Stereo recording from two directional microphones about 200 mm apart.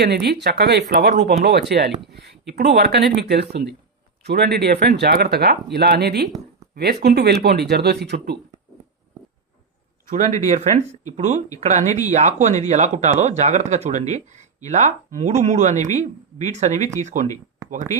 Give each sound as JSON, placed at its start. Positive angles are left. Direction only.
{"t": 0.0, "sound": "speech", "side_deg": -55}
{"t": 10.1, "sound": "speech", "side_deg": -40}